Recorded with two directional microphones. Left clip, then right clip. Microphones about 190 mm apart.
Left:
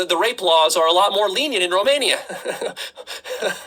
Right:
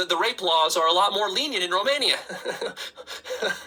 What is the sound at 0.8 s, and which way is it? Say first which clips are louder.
Speech: left 5 dB; 45° left (ahead or behind).